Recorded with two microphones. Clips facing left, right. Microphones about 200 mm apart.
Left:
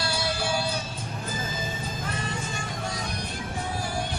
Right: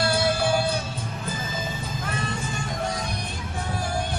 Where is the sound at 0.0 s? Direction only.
55° right (ahead or behind).